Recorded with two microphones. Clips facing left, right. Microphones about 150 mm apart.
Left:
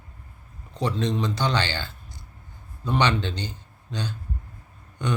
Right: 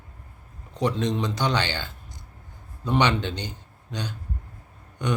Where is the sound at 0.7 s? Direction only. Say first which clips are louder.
Right 1 dB; 15° right (ahead or behind).